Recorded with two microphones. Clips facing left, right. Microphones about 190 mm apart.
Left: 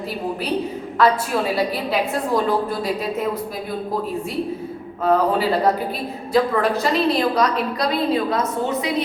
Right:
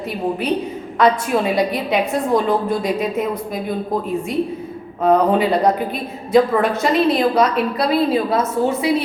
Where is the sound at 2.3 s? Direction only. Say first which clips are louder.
Right 3 dB; 20° right (ahead or behind).